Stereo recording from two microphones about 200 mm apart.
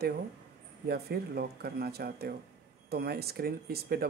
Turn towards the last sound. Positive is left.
turn(degrees=-50)  # may be behind; listen again after turning